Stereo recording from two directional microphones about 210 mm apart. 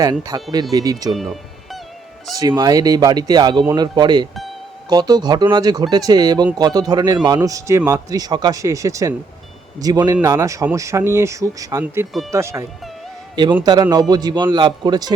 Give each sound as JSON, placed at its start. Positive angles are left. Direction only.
{"t": 0.0, "sound": "speech", "side_deg": -15}
{"t": 1.1, "sound": "music", "side_deg": 0}
{"t": 2.4, "sound": "a man's voice", "side_deg": -20}